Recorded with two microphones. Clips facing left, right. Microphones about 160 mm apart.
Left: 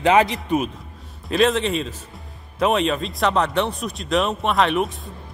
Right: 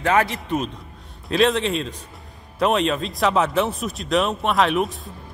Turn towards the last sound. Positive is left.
turn(degrees=0)  # may be behind; listen again after turning